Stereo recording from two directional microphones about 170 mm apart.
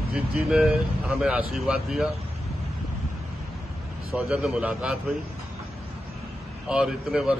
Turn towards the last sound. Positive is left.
turn(degrees=0)  # may be behind; listen again after turning